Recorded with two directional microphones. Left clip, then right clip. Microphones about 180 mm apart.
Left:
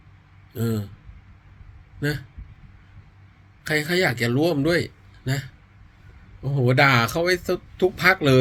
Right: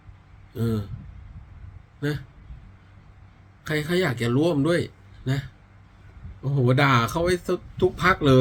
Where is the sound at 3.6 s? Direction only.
15° right (ahead or behind).